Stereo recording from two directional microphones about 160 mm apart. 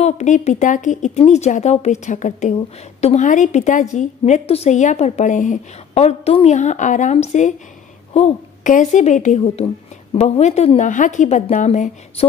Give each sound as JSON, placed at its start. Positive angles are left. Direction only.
{"t": 0.0, "sound": "a woman's voice", "side_deg": 45}